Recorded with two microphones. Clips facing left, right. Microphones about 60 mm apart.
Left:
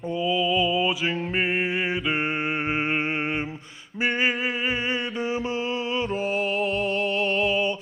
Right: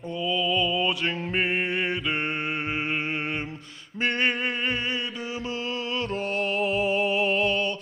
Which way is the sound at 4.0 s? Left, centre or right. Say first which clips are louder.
Left 1 dB; centre.